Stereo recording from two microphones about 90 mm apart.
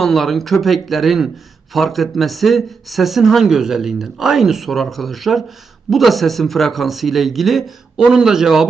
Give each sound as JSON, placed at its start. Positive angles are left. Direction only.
{"t": 0.0, "sound": "speech", "side_deg": 0}